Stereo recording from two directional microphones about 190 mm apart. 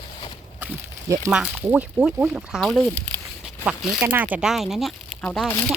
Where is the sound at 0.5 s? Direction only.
10° right (ahead or behind).